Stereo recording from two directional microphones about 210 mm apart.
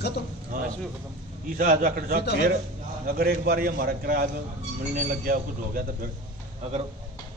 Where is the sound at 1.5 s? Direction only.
40° right (ahead or behind).